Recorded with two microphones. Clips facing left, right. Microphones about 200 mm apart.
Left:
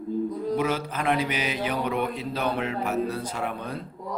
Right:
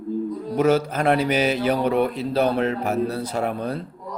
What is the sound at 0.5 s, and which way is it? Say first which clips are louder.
A man's voice: right 10 dB; 45° right (ahead or behind).